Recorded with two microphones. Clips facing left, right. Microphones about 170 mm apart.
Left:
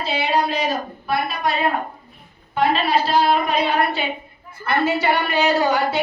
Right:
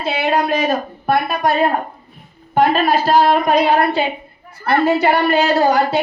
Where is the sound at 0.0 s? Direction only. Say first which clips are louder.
Right 3 dB; 55° right (ahead or behind).